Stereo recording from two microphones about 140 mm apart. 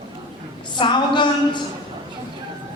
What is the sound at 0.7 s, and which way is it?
Speech, 35° left (ahead or behind).